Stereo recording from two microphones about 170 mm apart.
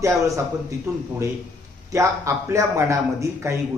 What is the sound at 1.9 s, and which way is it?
Speech, 15° right (ahead or behind).